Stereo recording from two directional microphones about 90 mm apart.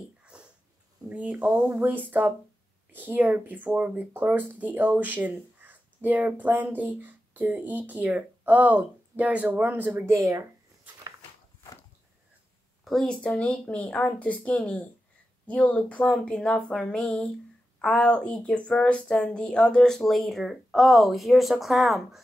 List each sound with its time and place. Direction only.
0.2 s dog: 10° right (ahead or behind)
1.0 s speech: 15° right (ahead or behind)
10.1 s speech: 35° right (ahead or behind)
12.8 s speech: 5° left (ahead or behind)